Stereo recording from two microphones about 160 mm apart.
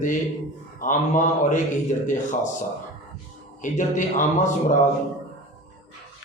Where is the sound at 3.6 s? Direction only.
55° left (ahead or behind).